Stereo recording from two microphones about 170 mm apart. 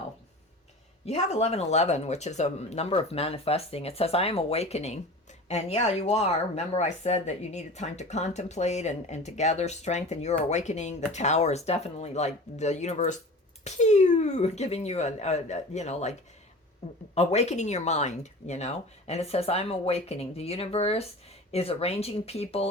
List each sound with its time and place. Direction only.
1.0 s speech: 40° left (ahead or behind)